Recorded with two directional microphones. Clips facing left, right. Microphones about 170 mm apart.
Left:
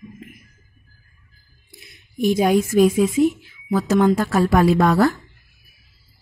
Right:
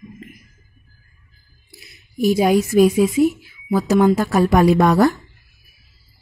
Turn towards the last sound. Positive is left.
turn(degrees=-15)  # may be behind; listen again after turning